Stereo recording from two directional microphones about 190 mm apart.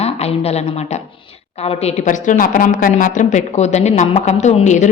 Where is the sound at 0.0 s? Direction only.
35° left (ahead or behind).